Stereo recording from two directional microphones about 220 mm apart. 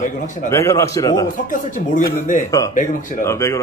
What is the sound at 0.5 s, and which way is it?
Speech, 15° left (ahead or behind).